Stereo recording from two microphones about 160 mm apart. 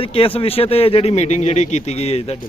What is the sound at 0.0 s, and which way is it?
Speech, 35° left (ahead or behind).